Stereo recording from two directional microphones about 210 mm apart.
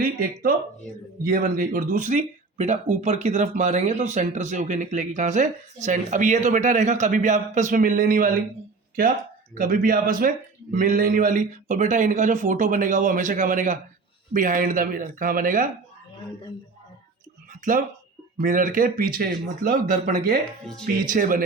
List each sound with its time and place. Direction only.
0.0 s speech: 45° right (ahead or behind)
17.5 s a sound: 40° right (ahead or behind)
18.3 s speech: 40° right (ahead or behind)